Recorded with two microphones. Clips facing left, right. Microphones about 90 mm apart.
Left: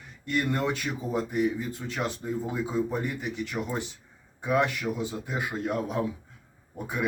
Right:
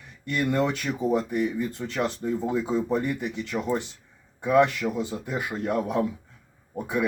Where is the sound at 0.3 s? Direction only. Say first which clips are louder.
Right 3 dB; 65° right (ahead or behind).